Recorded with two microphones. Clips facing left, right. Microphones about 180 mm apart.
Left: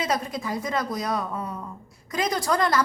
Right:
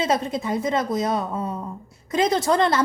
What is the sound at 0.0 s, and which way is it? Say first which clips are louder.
A woman's voice: right 4 dB; 25° right (ahead or behind).